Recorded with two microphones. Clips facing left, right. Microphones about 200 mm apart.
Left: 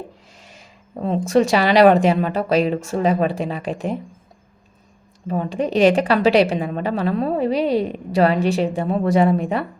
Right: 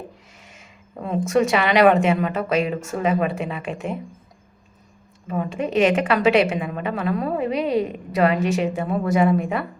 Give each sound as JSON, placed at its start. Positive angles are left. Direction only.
{"t": 0.3, "sound": "speech", "side_deg": 35}
{"t": 5.3, "sound": "speech", "side_deg": 30}